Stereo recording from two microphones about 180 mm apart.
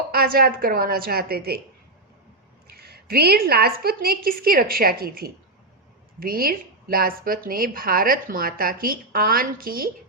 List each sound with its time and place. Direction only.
0.1 s a woman's voice: 55° right (ahead or behind)
2.7 s a woman's voice: 60° right (ahead or behind)